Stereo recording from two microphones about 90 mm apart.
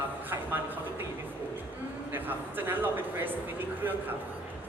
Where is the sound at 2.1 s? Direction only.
20° right (ahead or behind).